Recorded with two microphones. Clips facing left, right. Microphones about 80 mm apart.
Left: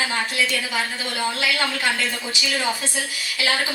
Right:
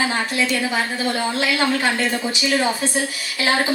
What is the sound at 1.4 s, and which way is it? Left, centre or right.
Speech, right.